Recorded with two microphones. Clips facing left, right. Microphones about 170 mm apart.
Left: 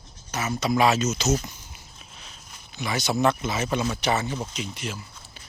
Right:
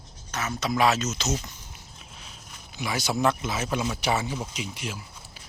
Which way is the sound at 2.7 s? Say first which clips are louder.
Left 2 dB; 10° right (ahead or behind).